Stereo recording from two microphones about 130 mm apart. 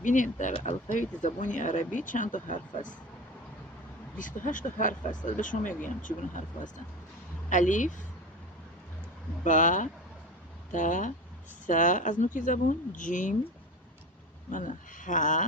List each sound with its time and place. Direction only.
0.0 s speech: 75° left (ahead or behind)
4.2 s speech: 90° left
7.5 s speech: 75° left (ahead or behind)
9.4 s speech: 75° left (ahead or behind)
14.5 s speech: 80° left